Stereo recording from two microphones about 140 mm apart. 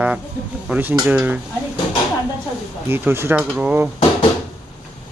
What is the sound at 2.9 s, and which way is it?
Speech, 15° right (ahead or behind).